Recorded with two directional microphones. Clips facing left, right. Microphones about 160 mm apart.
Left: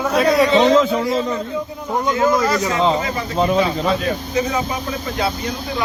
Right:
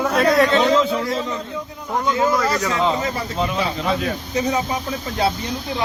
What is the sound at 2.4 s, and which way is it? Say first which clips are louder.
Speech: left 2 dB; 25° left (ahead or behind).